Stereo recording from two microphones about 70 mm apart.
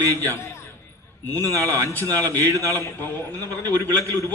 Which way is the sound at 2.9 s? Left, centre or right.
Left.